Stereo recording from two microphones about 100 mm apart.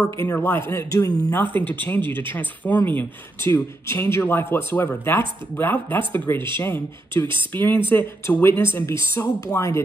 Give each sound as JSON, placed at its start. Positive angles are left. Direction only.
{"t": 0.0, "sound": "a man's voice", "side_deg": 25}
{"t": 1.3, "sound": "speech", "side_deg": 20}